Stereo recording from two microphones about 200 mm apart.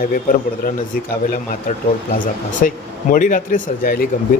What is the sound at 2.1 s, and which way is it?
Speech, 40° left (ahead or behind).